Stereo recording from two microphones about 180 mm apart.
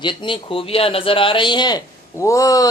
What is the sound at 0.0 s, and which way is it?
Speech, 25° left (ahead or behind).